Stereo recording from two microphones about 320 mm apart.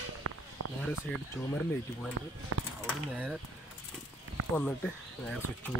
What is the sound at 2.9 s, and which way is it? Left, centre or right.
Speech, centre.